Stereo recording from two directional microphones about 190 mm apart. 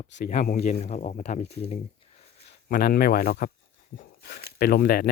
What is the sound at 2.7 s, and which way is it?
Speech, 55° left (ahead or behind).